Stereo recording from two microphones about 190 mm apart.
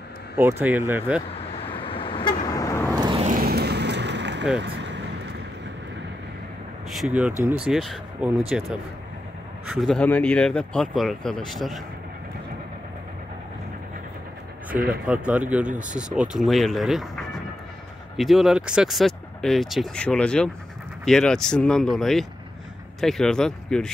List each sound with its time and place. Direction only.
0.4 s speech: 10° right (ahead or behind)
1.7 s vehicle: 30° left (ahead or behind)
2.9 s vehicle: 25° right (ahead or behind)
3.3 s vehicle: 50° right (ahead or behind)
6.9 s speech: 5° right (ahead or behind)
14.9 s speech: 5° right (ahead or behind)